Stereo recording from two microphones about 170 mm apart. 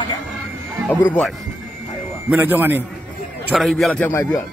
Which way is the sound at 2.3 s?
10° right (ahead or behind).